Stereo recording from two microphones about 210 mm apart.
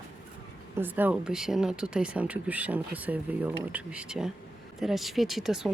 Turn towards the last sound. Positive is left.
turn(degrees=0)  # may be behind; listen again after turning